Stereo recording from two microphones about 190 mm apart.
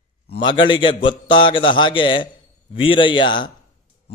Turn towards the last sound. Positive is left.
turn(degrees=25)  # may be behind; listen again after turning